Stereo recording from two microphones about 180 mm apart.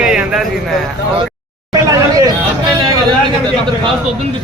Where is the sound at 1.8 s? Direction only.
20° right (ahead or behind).